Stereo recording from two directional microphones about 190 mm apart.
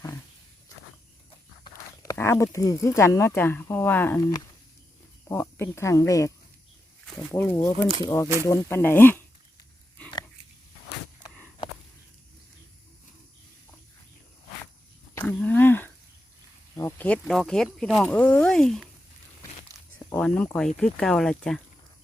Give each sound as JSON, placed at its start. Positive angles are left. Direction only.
{"t": 1.6, "sound": "speech", "side_deg": 20}
{"t": 15.1, "sound": "a sound", "side_deg": 10}
{"t": 16.7, "sound": "speech", "side_deg": 10}
{"t": 20.1, "sound": "speech", "side_deg": 5}